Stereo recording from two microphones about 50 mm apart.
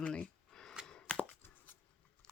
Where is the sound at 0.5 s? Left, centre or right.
Centre.